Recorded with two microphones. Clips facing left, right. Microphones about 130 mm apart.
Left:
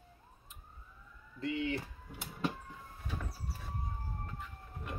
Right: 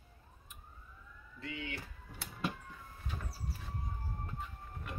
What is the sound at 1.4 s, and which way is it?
Speech, 35° left (ahead or behind).